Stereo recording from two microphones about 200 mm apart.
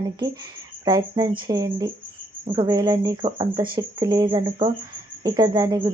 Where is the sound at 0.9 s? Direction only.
20° right (ahead or behind).